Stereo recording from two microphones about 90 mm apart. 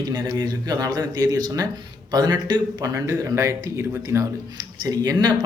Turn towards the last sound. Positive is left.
turn(degrees=-45)  # may be behind; listen again after turning